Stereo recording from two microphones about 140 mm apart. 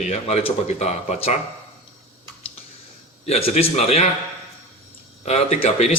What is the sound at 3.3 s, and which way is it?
Speech, 45° left (ahead or behind).